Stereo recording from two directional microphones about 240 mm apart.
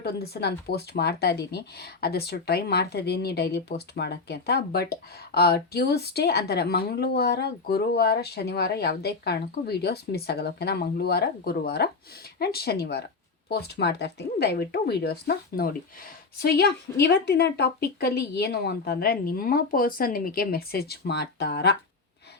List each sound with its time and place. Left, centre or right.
0.0 s speech: left